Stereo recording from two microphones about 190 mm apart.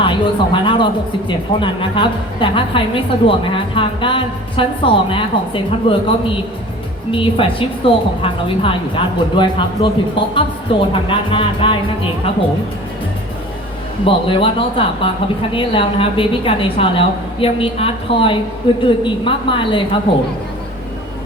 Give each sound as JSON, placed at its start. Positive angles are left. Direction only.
{"t": 0.0, "sound": "a woman's voice", "side_deg": 25}
{"t": 14.0, "sound": "a woman's voice", "side_deg": 30}